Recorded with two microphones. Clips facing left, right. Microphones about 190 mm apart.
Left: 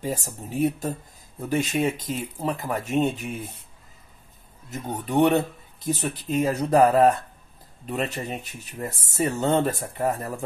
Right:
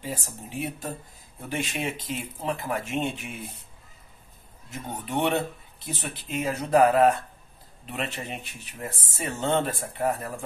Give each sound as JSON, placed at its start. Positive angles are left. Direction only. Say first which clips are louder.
{"t": 0.0, "sound": "speech", "louder": "left 5 dB", "side_deg": 45}
{"t": 4.6, "sound": "speech", "louder": "left 4 dB", "side_deg": 40}